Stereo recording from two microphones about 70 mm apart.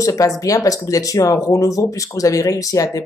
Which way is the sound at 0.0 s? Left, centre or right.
Left.